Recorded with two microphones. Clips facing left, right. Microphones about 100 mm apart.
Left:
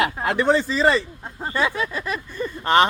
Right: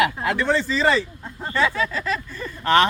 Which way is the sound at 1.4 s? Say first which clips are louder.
Right 1 dB; 20° left (ahead or behind).